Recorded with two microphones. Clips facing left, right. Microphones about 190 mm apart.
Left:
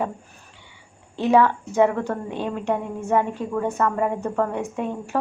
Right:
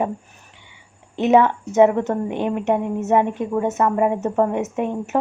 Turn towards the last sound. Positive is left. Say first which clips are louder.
# right 4 dB
turn(degrees=-20)  # may be behind; listen again after turning